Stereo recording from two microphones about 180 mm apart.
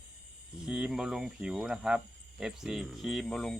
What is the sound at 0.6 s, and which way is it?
Speech, 5° right (ahead or behind).